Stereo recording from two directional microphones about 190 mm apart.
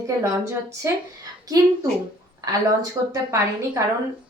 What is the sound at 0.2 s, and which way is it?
Speech, 15° right (ahead or behind).